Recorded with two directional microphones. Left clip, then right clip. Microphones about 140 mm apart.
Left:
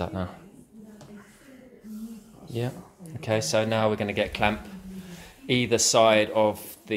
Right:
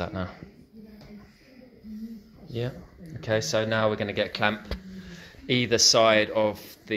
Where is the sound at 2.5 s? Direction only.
35° left (ahead or behind).